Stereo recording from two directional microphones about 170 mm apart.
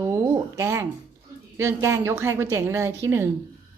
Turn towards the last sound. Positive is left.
turn(degrees=-15)  # may be behind; listen again after turning